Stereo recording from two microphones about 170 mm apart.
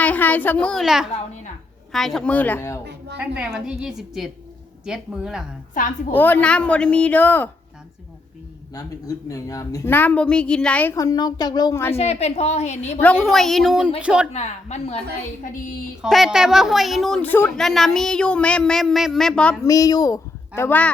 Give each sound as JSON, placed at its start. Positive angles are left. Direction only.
{"t": 0.0, "sound": "a child's voice", "side_deg": 10}
{"t": 3.2, "sound": "speech", "side_deg": -5}
{"t": 6.1, "sound": "a woman's voice", "side_deg": 10}
{"t": 8.7, "sound": "a woman's voice", "side_deg": 20}
{"t": 10.9, "sound": "speech", "side_deg": 20}
{"t": 11.9, "sound": "a woman's voice", "side_deg": 40}
{"t": 13.0, "sound": "speech", "side_deg": 5}
{"t": 14.3, "sound": "a woman's voice", "side_deg": 40}
{"t": 16.0, "sound": "speech", "side_deg": 0}
{"t": 19.6, "sound": "speech", "side_deg": 20}
{"t": 20.6, "sound": "a woman's voice", "side_deg": 10}